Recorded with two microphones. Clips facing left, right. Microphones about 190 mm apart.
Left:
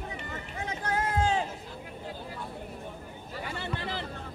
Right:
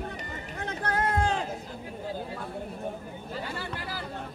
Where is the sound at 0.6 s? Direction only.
60° right (ahead or behind).